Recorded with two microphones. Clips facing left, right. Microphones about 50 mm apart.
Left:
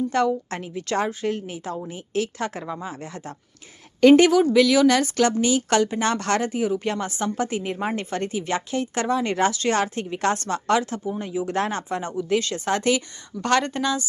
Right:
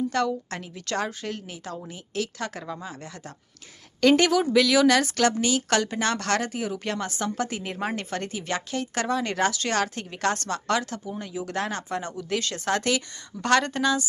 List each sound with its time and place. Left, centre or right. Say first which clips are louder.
0.1 s a woman's voice: left 4 dB; centre
4.0 s a woman's voice: left 6 dB; centre
11.9 s speech: left 5 dB; centre